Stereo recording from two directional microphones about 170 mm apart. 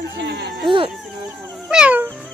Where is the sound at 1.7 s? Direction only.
5° right (ahead or behind).